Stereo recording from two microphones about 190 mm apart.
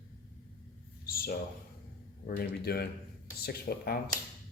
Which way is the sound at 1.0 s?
50° left (ahead or behind).